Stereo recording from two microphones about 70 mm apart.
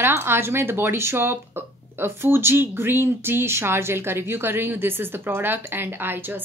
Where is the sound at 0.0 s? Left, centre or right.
Right.